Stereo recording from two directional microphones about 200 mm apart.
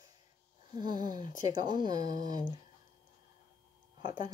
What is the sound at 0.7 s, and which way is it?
Speech, 20° right (ahead or behind).